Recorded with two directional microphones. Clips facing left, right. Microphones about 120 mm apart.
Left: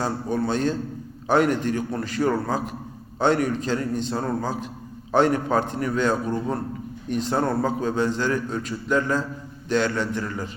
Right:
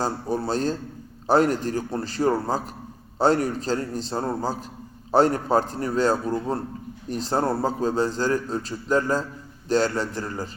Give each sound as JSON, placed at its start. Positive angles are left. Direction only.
{"t": 0.0, "sound": "a man's voice", "side_deg": -35}